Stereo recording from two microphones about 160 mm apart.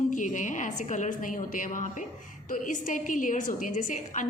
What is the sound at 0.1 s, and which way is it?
A woman's voice, 55° left (ahead or behind).